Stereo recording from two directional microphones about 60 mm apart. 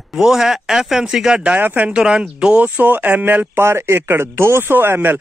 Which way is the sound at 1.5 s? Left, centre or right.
Right.